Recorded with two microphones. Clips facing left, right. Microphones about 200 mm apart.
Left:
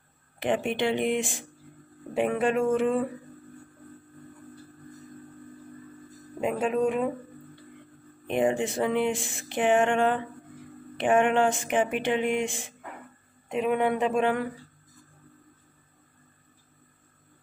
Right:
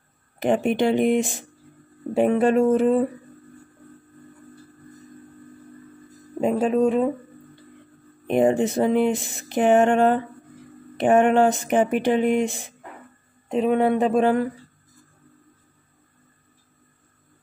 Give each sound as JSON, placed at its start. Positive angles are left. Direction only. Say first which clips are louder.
{"t": 0.4, "sound": "speech", "louder": "right 6 dB", "side_deg": -40}
{"t": 6.4, "sound": "speech", "louder": "right 6 dB", "side_deg": -35}
{"t": 8.3, "sound": "speech", "louder": "right 6 dB", "side_deg": -40}